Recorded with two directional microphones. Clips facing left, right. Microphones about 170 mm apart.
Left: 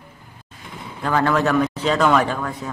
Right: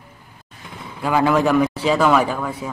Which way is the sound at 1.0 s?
10° right (ahead or behind).